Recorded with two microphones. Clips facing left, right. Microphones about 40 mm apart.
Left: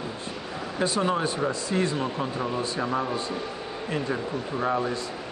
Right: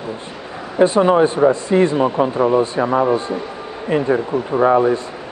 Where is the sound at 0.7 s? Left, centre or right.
Right.